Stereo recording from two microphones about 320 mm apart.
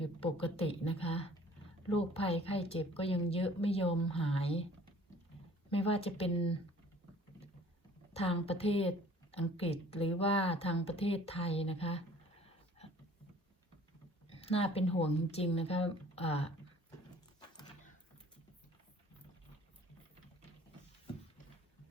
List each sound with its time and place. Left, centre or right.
0.0 s a woman's voice: centre
5.7 s a woman's voice: centre
8.1 s a woman's voice: centre
14.3 s a woman's voice: centre